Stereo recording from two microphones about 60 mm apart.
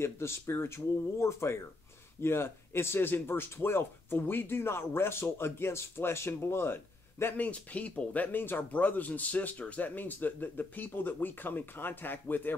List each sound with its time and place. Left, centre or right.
0.0 s speech: left
7.4 s speech: left